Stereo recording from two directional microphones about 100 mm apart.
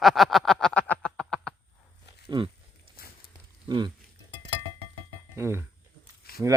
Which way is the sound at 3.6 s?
50° right (ahead or behind).